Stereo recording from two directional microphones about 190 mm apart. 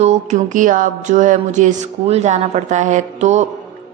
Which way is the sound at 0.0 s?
35° right (ahead or behind).